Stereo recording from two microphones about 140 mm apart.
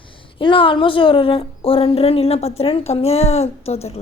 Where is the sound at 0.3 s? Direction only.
40° left (ahead or behind).